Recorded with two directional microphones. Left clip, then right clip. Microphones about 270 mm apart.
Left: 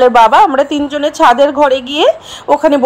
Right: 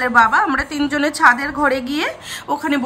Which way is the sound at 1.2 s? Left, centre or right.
Centre.